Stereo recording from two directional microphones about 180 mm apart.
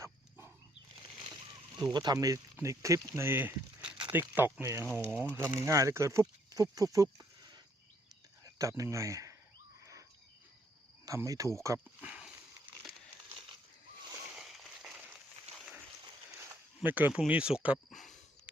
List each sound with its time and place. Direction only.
0.0 s dog: 15° right (ahead or behind)
1.7 s speech: 25° right (ahead or behind)
9.8 s cricket: 15° right (ahead or behind)
11.0 s speech: 20° right (ahead or behind)
11.9 s a sound: 5° right (ahead or behind)
14.3 s a sound: centre (ahead or behind)
16.4 s speech: 10° right (ahead or behind)